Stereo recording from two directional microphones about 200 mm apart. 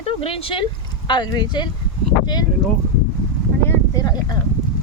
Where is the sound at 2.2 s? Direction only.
20° left (ahead or behind).